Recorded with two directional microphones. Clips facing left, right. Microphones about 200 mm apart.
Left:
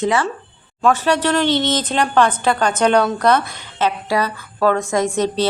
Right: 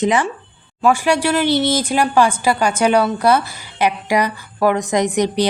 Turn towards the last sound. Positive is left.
turn(degrees=-15)  # may be behind; listen again after turning